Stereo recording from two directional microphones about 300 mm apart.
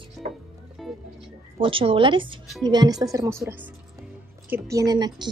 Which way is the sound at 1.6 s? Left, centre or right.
Centre.